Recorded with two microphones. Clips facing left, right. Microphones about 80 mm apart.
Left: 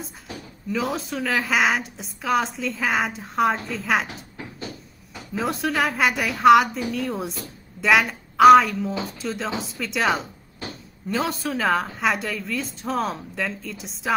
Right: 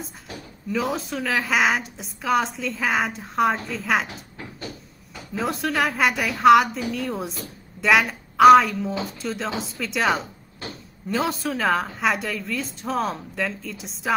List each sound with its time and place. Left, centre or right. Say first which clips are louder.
0.7 s a woman's voice: right 1 dB; centre
5.3 s a woman's voice: even; centre